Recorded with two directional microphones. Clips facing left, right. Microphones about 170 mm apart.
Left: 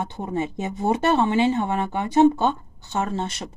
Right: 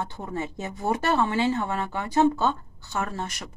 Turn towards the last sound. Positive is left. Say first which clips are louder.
# left 5 dB
turn(degrees=25)  # may be behind; listen again after turning